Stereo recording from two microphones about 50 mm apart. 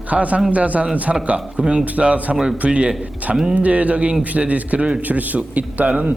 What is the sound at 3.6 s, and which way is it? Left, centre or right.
A man's voice, right.